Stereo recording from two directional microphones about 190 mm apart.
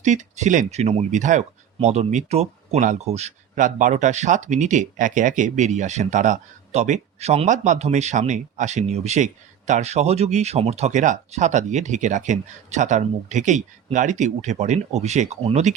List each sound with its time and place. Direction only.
0.0 s speech: 40° right (ahead or behind)